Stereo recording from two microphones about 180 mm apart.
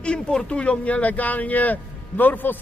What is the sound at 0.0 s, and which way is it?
A man's voice, 5° left (ahead or behind).